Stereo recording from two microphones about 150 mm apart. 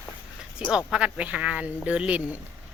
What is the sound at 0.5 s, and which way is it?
Speech, 5° right (ahead or behind).